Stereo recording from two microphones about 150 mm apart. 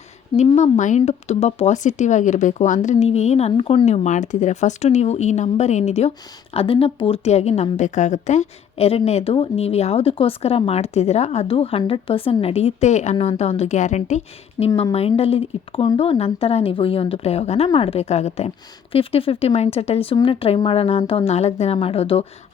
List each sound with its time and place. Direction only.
0.4 s speech: 50° left (ahead or behind)
14.6 s a woman's voice: 25° left (ahead or behind)
14.9 s speech: 40° left (ahead or behind)